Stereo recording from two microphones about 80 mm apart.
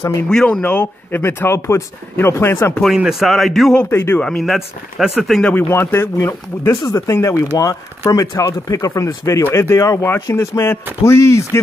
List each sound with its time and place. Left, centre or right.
0.3 s speech: centre; by 2.7 s left
3.1 s speech: centre
3.9 s speech: left
4.2 s speech: centre
5.4 s speech: left